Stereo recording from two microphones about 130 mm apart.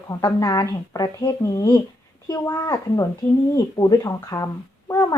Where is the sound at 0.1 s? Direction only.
25° left (ahead or behind).